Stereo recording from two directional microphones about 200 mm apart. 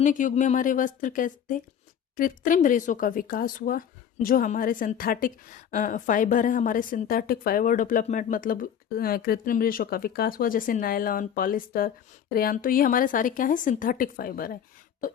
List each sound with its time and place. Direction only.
0.0 s a woman's voice: 40° left (ahead or behind)